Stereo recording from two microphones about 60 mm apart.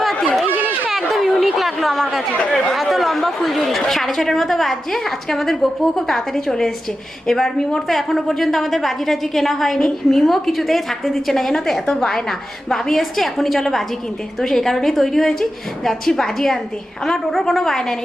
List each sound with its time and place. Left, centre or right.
0.0 s chatter: centre
0.5 s chatter: right
0.9 s a sound: centre
2.5 s a woman's voice: centre